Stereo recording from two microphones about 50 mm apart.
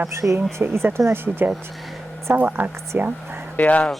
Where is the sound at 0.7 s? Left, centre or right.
Right.